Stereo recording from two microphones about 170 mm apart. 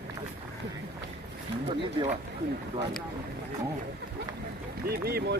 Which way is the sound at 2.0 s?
25° right (ahead or behind).